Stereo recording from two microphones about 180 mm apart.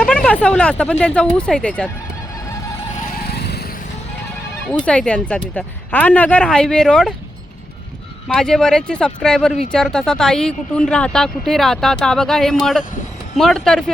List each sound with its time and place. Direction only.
0.0 s speech: 5° left (ahead or behind)
3.2 s vehicle: 60° left (ahead or behind)
4.7 s speech: 5° left (ahead or behind)
8.4 s speech: 5° left (ahead or behind)